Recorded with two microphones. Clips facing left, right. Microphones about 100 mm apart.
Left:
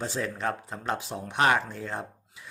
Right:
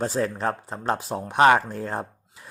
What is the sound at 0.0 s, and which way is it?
Speech, 40° right (ahead or behind).